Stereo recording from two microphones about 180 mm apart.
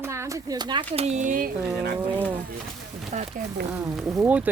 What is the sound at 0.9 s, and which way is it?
Speech, 40° right (ahead or behind).